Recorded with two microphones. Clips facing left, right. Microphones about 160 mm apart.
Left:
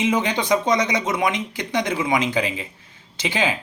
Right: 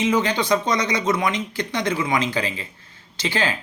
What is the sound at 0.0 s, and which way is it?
Speech, 20° left (ahead or behind).